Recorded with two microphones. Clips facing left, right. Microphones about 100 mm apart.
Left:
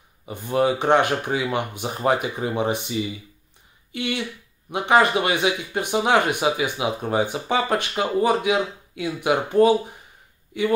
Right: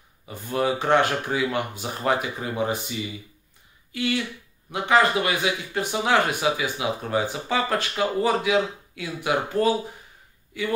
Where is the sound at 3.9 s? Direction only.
20° left (ahead or behind).